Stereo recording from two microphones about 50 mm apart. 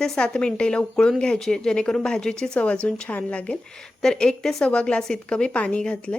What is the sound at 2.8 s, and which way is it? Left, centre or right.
Speech, left.